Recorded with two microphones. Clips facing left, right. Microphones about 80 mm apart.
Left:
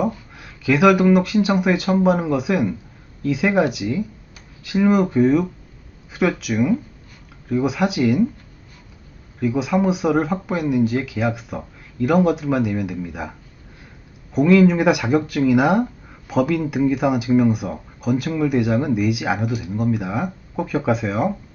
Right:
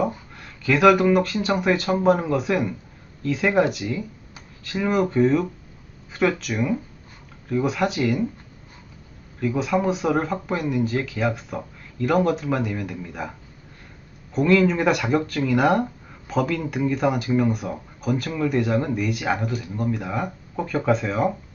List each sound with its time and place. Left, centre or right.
0.3 s speech: centre
9.4 s speech: centre
14.3 s speech: centre